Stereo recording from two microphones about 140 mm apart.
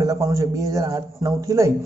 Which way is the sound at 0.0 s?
25° right (ahead or behind).